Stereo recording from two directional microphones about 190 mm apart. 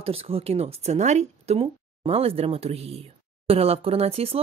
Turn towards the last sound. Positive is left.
turn(degrees=-30)  # may be behind; listen again after turning